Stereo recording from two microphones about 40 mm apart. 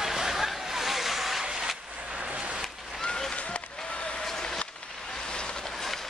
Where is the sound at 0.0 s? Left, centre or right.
Centre.